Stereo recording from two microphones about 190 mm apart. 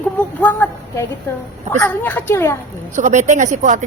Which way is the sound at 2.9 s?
40° right (ahead or behind).